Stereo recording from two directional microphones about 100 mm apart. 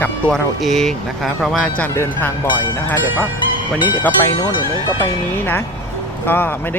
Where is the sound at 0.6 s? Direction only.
5° left (ahead or behind).